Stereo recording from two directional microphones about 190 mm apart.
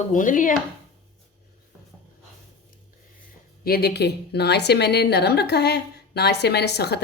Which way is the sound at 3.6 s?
55° left (ahead or behind).